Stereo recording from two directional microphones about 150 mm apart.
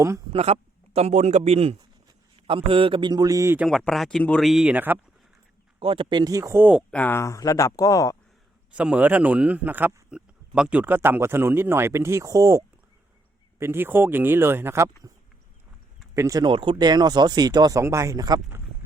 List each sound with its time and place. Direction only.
0.3 s a man's voice: 45° right (ahead or behind); by 3.7 s 15° right (ahead or behind)
3.7 s speech: centre (ahead or behind)
5.8 s speech: 35° right (ahead or behind); by 6.8 s 10° right (ahead or behind)
6.9 s speech: 15° left (ahead or behind)
8.7 s speech: 10° right (ahead or behind)
16.1 s speech: 20° right (ahead or behind)